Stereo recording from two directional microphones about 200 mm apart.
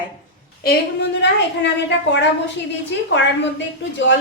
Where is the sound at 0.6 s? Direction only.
55° left (ahead or behind).